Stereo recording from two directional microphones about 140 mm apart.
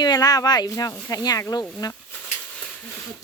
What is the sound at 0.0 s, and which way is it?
Speech, 30° left (ahead or behind).